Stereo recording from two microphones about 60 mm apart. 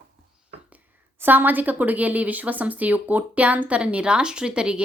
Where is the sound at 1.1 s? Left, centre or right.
Right; by 4.8 s centre.